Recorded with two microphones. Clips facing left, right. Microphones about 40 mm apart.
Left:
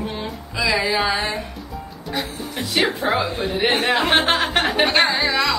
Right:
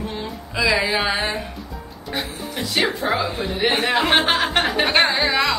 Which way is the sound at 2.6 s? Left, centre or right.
Centre.